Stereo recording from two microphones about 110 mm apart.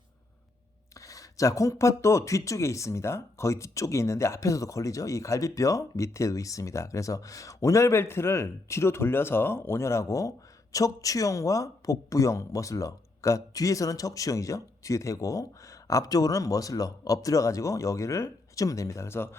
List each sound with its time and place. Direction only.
0.9 s speech: 30° left (ahead or behind)